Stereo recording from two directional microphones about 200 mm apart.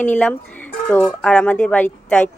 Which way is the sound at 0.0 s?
5° left (ahead or behind).